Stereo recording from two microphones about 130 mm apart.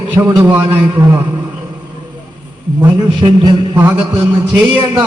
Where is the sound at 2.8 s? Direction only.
30° right (ahead or behind).